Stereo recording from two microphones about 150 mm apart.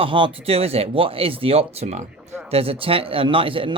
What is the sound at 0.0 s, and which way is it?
Speech, 35° right (ahead or behind).